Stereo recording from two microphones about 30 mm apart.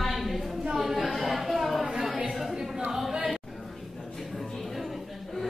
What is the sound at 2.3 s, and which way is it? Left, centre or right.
Chatter, centre.